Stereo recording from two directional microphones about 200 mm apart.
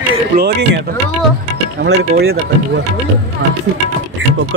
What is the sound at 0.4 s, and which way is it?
Speech, 55° right (ahead or behind).